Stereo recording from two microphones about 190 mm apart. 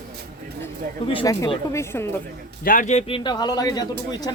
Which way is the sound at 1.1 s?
25° left (ahead or behind).